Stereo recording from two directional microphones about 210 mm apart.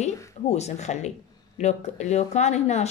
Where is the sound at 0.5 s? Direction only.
30° left (ahead or behind).